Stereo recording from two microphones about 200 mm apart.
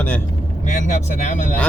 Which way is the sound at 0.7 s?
35° left (ahead or behind).